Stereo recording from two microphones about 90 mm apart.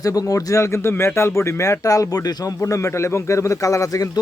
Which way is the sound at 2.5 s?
35° left (ahead or behind).